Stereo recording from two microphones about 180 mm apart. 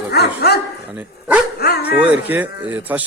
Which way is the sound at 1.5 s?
60° left (ahead or behind).